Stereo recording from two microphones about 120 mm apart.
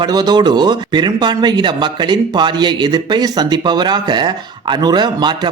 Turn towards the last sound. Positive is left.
turn(degrees=-40)  # may be behind; listen again after turning